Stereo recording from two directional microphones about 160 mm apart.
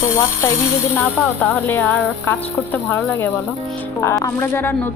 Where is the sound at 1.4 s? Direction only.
10° left (ahead or behind).